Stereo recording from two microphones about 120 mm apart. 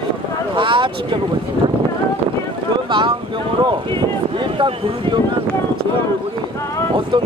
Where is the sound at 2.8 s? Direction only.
40° right (ahead or behind).